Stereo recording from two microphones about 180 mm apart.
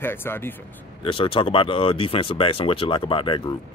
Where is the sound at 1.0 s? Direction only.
30° left (ahead or behind).